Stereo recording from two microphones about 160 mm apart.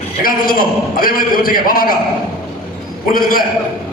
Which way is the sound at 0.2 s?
65° left (ahead or behind).